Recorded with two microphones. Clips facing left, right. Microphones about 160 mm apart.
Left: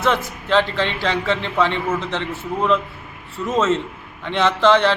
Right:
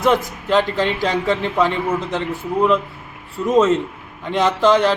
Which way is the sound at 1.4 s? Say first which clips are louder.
Right 2 dB; 10° right (ahead or behind).